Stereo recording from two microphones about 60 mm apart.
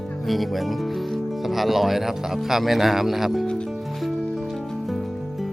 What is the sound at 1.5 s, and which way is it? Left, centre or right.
A man's voice, centre.